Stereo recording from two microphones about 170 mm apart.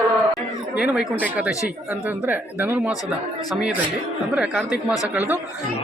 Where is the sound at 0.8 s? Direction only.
5° right (ahead or behind).